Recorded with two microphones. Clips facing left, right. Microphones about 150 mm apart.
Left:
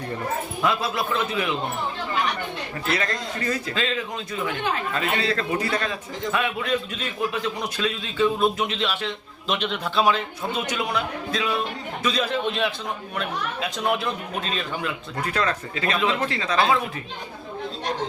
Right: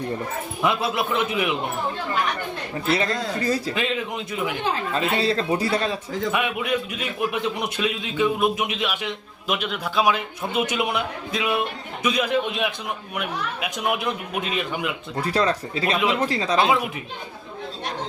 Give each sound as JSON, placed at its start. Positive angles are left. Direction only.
{"t": 0.6, "sound": "a man's voice", "side_deg": -20}
{"t": 2.9, "sound": "a man's voice", "side_deg": -30}
{"t": 3.8, "sound": "a man's voice", "side_deg": -15}
{"t": 4.6, "sound": "speech", "side_deg": -30}
{"t": 6.3, "sound": "a man's voice", "side_deg": -15}
{"t": 15.1, "sound": "speech", "side_deg": -35}
{"t": 16.6, "sound": "a man's voice", "side_deg": -15}